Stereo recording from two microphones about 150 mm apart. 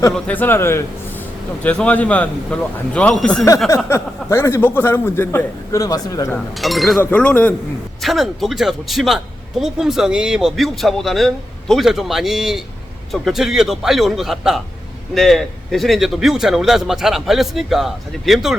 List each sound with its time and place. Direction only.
0.1 s a man's voice: 10° left (ahead or behind)
3.8 s a man's voice: 15° left (ahead or behind)
6.3 s a man's voice: centre (ahead or behind)
7.0 s a man's voice: 10° left (ahead or behind)
8.0 s a man's voice: centre (ahead or behind)